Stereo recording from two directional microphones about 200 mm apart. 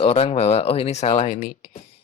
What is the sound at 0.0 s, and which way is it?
Speech, 30° left (ahead or behind).